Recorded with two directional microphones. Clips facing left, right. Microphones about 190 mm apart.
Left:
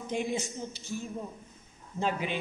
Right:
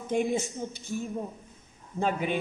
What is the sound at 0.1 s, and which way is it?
Speech, 50° right (ahead or behind).